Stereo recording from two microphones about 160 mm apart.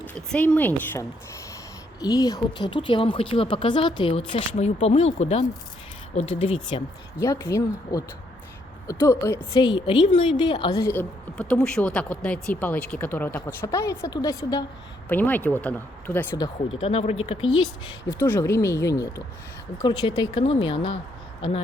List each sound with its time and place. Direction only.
0.0 s a woman's voice: 10° left (ahead or behind); by 6.8 s 35° left (ahead or behind)
7.2 s a woman's voice: 15° left (ahead or behind)
9.6 s a woman's voice: 30° left (ahead or behind)
15.1 s a woman's voice: 10° left (ahead or behind)
16.8 s speech: 35° left (ahead or behind)
17.6 s speech: 25° left (ahead or behind)
20.0 s speech: 30° left (ahead or behind)